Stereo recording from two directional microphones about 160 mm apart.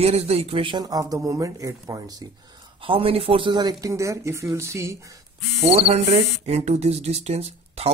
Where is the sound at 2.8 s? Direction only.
35° right (ahead or behind); by 4.9 s 20° right (ahead or behind).